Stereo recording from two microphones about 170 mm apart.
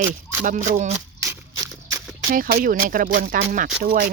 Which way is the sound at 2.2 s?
60° right (ahead or behind).